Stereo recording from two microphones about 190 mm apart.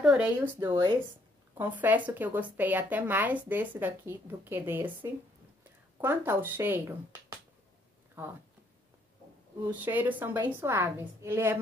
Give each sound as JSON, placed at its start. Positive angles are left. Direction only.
{"t": 0.0, "sound": "a sound", "side_deg": -5}
{"t": 0.6, "sound": "speech", "side_deg": -20}
{"t": 1.6, "sound": "speech", "side_deg": -10}
{"t": 9.7, "sound": "speech", "side_deg": -10}